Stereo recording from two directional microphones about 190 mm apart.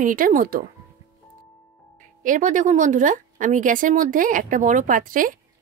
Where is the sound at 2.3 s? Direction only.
45° right (ahead or behind).